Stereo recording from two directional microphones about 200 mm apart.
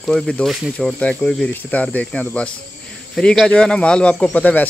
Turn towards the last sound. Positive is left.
turn(degrees=5)  # may be behind; listen again after turning